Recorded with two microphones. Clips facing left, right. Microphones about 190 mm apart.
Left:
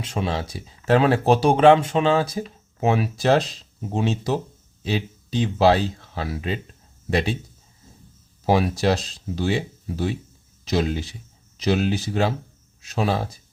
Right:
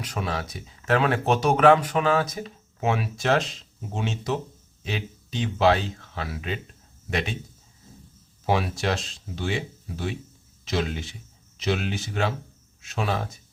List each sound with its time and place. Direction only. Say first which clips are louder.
0.0 s speech: left 4 dB; 25° left (ahead or behind)
8.4 s speech: left 5 dB; 35° left (ahead or behind)